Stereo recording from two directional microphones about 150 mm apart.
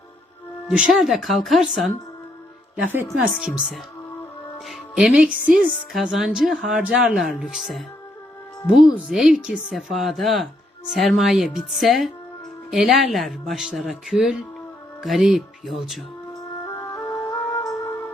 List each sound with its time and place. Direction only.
0.7 s speech: 5° right (ahead or behind)
2.8 s a woman's voice: 10° right (ahead or behind)
5.3 s speech: 65° right (ahead or behind)
5.7 s speech: centre (ahead or behind)
16.3 s music: 20° left (ahead or behind)